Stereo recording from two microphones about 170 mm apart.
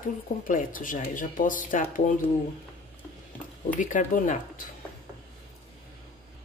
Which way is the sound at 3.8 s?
50° left (ahead or behind).